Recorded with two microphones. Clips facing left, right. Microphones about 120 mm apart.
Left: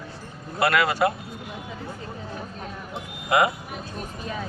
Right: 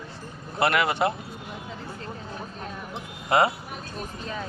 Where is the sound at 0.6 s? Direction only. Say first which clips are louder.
Left 2 dB; 25° right (ahead or behind).